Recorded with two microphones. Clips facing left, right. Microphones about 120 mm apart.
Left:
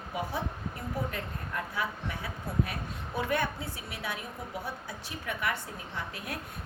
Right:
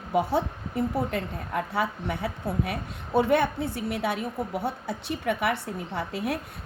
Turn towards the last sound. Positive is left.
turn(degrees=-70)  # may be behind; listen again after turning